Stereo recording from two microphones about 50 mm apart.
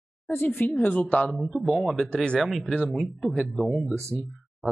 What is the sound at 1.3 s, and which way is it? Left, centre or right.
Speech, centre.